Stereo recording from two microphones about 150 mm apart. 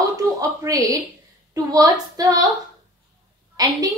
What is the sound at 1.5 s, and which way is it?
Speech, 25° right (ahead or behind).